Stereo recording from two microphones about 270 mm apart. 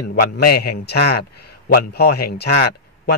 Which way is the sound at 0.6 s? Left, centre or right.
Left.